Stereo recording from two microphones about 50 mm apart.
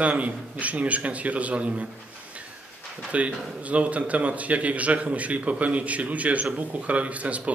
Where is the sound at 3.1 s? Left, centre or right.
Right.